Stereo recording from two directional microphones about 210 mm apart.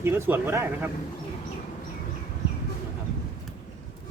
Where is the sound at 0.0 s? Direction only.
10° right (ahead or behind).